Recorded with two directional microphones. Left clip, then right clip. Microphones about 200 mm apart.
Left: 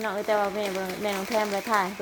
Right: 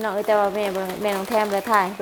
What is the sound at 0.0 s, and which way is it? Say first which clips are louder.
Speech: right 6 dB; 15° right (ahead or behind).